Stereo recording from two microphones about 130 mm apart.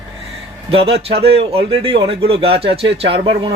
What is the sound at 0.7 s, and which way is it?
Speech, 50° right (ahead or behind).